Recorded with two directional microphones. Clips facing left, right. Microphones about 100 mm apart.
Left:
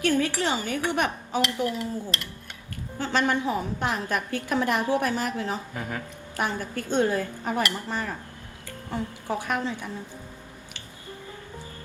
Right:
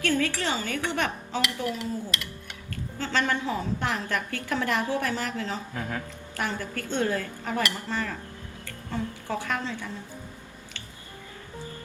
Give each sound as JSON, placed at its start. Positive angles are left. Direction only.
{"t": 0.0, "sound": "a woman's voice", "side_deg": 20}
{"t": 3.0, "sound": "a woman's voice", "side_deg": 20}